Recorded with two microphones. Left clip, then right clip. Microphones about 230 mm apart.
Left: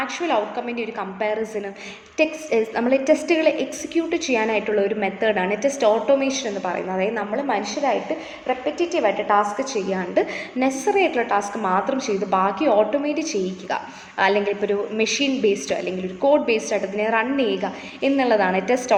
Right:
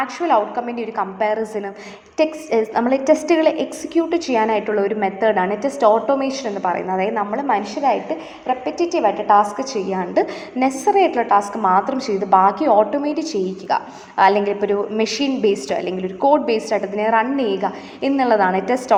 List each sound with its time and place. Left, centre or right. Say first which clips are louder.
0.0 s a woman's voice: right 5 dB; centre